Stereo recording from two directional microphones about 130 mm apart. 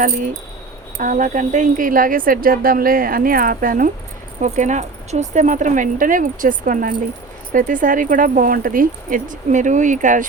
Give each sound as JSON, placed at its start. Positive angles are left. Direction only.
{"t": 0.9, "sound": "speech", "side_deg": -85}
{"t": 4.4, "sound": "speech", "side_deg": -65}
{"t": 9.3, "sound": "speech", "side_deg": -75}